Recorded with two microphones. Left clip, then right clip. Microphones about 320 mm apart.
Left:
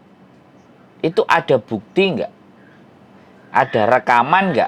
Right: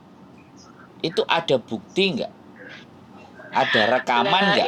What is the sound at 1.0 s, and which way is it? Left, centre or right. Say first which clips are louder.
Speech: left 6 dB; left.